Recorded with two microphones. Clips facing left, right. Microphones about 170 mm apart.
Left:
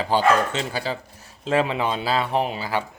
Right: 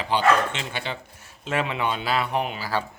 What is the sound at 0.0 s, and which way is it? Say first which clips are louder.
Speech: left 2 dB; 40° left (ahead or behind).